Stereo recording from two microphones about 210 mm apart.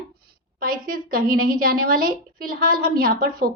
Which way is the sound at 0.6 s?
45° right (ahead or behind).